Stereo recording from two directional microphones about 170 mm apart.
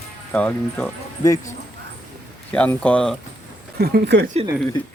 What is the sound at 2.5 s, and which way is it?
Speech, 10° left (ahead or behind).